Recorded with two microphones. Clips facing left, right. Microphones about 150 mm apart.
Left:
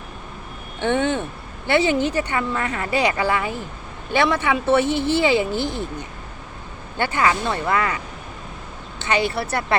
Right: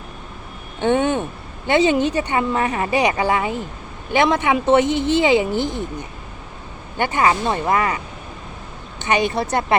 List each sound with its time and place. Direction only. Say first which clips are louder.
0.9 s vehicle: right 3 dB; 15° right (ahead or behind)
1.6 s speech: right 2 dB; 15° right (ahead or behind)
9.0 s speech: right 2 dB; 15° right (ahead or behind)